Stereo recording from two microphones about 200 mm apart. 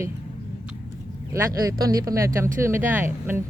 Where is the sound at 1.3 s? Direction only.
15° right (ahead or behind).